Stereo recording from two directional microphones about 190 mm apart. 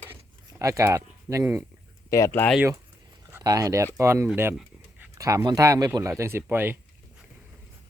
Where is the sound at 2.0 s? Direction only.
15° left (ahead or behind).